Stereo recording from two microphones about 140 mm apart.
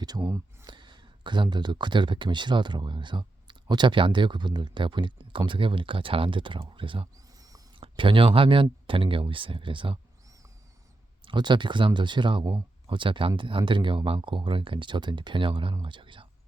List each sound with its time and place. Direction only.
0.2 s speech: 15° right (ahead or behind)
0.6 s speech: 35° right (ahead or behind)
7.3 s owl: 25° right (ahead or behind)
7.8 s speech: 35° right (ahead or behind)
11.2 s speech: 35° right (ahead or behind)